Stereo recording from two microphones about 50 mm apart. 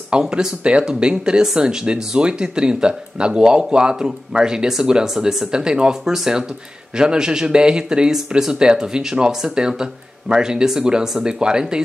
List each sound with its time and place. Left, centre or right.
0.2 s a man's voice: centre